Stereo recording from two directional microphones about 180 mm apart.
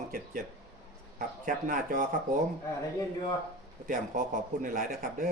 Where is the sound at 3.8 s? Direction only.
45° right (ahead or behind).